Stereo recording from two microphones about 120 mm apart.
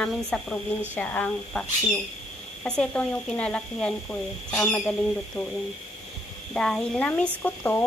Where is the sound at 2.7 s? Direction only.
10° left (ahead or behind).